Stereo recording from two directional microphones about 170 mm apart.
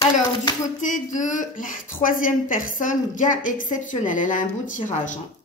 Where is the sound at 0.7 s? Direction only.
50° left (ahead or behind).